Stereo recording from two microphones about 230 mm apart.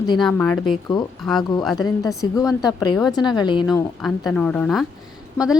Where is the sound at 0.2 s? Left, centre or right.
Centre.